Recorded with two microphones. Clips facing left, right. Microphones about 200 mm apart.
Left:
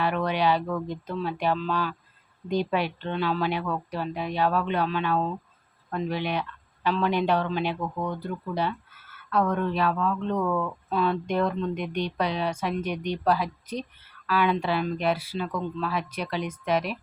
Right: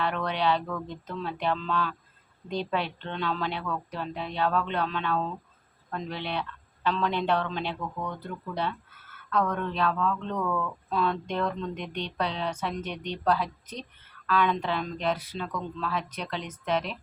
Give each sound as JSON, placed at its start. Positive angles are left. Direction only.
{"t": 0.0, "sound": "speech", "side_deg": 10}
{"t": 7.8, "sound": "speech", "side_deg": 30}
{"t": 8.2, "sound": "speech", "side_deg": 10}